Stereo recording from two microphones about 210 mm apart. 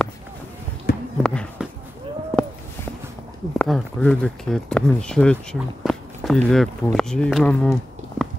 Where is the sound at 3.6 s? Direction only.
5° left (ahead or behind).